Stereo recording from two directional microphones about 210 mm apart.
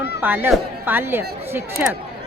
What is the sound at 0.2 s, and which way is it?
Speech, 10° right (ahead or behind).